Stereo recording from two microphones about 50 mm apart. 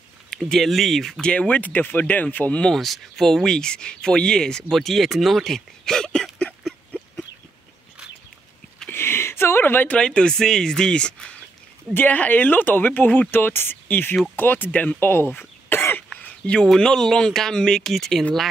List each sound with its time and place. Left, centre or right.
0.5 s speech: centre
1.2 s speech: left
2.7 s speech: centre
8.9 s a sound: left
9.8 s speech: centre
11.9 s speech: left
15.0 s throat clearing: left
16.2 s a sound: left
16.6 s speech: centre